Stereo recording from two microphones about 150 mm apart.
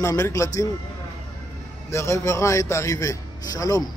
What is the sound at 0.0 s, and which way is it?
Speech, 20° left (ahead or behind).